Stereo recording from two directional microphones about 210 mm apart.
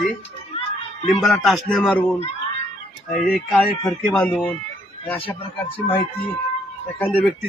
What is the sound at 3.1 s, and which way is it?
Speech, 45° left (ahead or behind).